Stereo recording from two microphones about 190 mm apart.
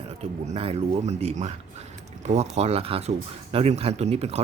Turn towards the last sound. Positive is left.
turn(degrees=-35)  # may be behind; listen again after turning